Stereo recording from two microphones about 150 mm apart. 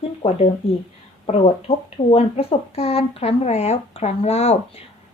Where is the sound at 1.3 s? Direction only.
45° left (ahead or behind).